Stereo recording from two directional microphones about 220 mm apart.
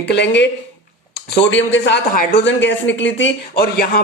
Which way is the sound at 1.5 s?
55° left (ahead or behind).